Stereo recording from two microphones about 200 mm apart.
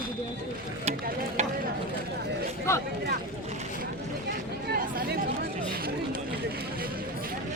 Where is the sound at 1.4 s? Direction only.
35° right (ahead or behind).